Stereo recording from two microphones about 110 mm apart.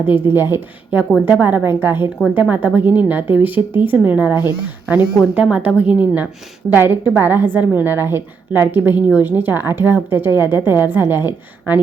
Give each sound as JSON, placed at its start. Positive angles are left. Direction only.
{"t": 0.0, "sound": "a woman's voice", "side_deg": -20}